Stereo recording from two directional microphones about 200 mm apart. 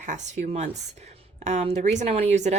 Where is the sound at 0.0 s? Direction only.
35° right (ahead or behind).